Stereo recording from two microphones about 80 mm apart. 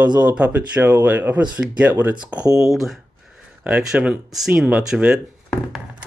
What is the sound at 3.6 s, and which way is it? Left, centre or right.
Speech, centre.